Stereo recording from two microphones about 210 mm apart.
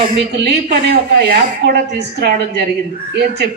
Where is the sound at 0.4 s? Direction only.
50° right (ahead or behind).